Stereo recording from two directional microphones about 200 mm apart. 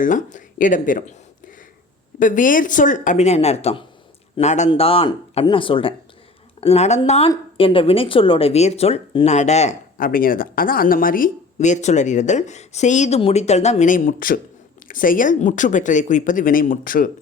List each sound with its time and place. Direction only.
0.0 s a woman's voice: 40° left (ahead or behind)
2.1 s a woman's voice: 40° left (ahead or behind)